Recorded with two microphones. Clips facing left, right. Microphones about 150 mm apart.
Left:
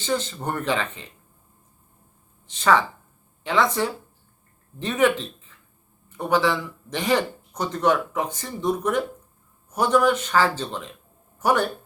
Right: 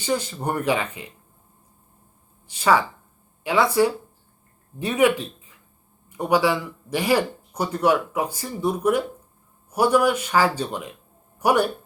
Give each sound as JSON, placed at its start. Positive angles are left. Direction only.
{"t": 0.0, "sound": "speech", "side_deg": -10}
{"t": 2.5, "sound": "speech", "side_deg": -10}